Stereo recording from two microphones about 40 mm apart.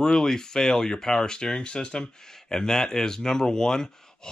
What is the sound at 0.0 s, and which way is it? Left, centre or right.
Speech, centre.